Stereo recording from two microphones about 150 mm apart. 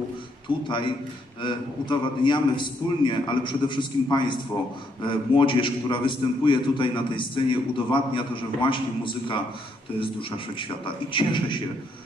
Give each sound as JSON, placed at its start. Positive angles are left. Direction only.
{"t": 1.4, "sound": "a man's voice", "side_deg": 30}
{"t": 10.5, "sound": "a man's voice", "side_deg": 35}